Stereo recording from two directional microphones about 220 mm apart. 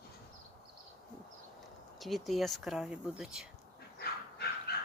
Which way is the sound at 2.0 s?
Centre (ahead or behind).